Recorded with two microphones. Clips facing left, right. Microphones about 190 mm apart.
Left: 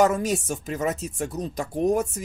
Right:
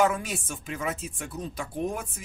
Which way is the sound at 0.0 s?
40° left (ahead or behind).